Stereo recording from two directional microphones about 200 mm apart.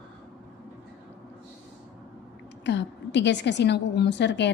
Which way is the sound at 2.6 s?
60° left (ahead or behind).